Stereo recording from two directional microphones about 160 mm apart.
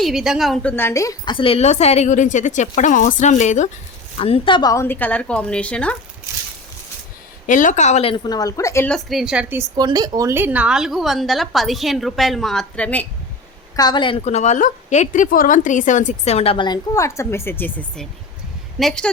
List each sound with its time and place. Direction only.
0.0 s a woman's voice: 5° right (ahead or behind); by 3.7 s 45° left (ahead or behind)
4.2 s a woman's voice: 35° left (ahead or behind); by 6.0 s 5° left (ahead or behind)
7.4 s a woman's voice: 55° left (ahead or behind)
8.1 s speech: 25° left (ahead or behind)
8.9 s a woman's voice: centre (ahead or behind)
9.7 s a woman's voice: 25° right (ahead or behind); by 13.1 s 10° left (ahead or behind)
13.7 s speech: 25° left (ahead or behind)
14.3 s a woman's voice: 45° left (ahead or behind); by 19.1 s 5° left (ahead or behind)